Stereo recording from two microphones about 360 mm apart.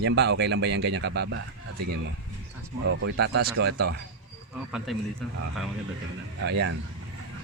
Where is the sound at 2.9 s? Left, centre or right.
Right.